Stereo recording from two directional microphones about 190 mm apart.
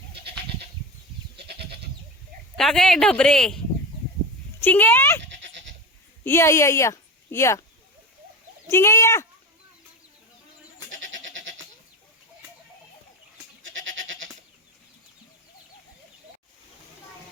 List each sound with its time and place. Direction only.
2.6 s speech: centre (ahead or behind)
4.6 s speech: 10° left (ahead or behind)
6.2 s a woman's voice: 15° left (ahead or behind)
8.6 s speech: 15° left (ahead or behind)
13.6 s goat: 90° right